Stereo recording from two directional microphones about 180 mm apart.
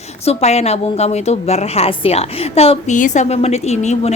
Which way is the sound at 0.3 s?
35° left (ahead or behind).